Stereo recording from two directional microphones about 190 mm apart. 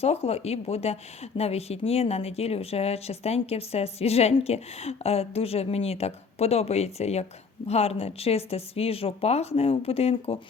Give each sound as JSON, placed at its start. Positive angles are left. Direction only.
{"t": 0.0, "sound": "a woman's voice", "side_deg": 30}